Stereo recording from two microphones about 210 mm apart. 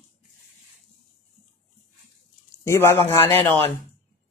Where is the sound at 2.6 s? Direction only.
10° left (ahead or behind).